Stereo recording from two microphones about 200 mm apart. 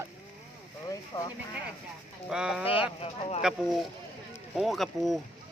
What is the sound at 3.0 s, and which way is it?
Speech, 30° left (ahead or behind).